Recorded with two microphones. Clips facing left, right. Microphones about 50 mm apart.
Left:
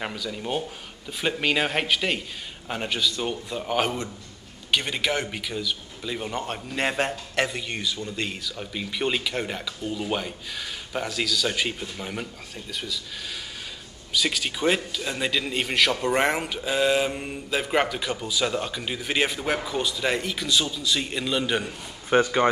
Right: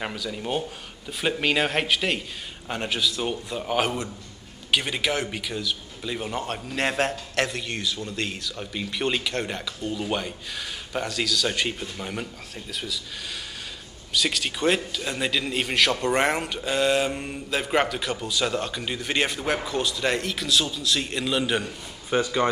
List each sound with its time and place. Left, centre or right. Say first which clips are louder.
0.0 s a man's voice: even; centre
14.1 s a man's voice: even; centre
22.1 s speech: left 3 dB; left